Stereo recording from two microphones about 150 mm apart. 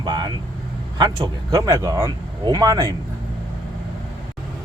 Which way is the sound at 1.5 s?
20° right (ahead or behind).